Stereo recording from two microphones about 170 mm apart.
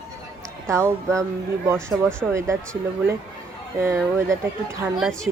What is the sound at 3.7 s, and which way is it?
Speech, 15° right (ahead or behind).